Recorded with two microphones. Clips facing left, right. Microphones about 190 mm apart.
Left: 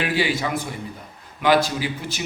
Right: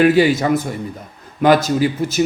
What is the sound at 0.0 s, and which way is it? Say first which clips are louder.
Speech: right 10 dB; 45° right (ahead or behind).